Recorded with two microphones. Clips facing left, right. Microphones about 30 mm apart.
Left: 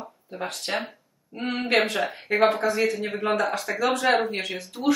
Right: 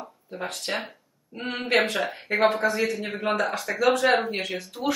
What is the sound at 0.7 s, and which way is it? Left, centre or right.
Speech, centre.